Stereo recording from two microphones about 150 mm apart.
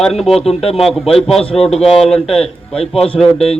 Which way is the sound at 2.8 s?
40° left (ahead or behind).